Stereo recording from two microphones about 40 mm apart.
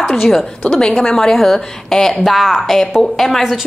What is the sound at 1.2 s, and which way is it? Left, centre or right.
A woman's voice, centre.